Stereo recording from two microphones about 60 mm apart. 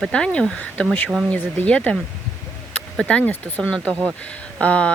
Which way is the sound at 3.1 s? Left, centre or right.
Left.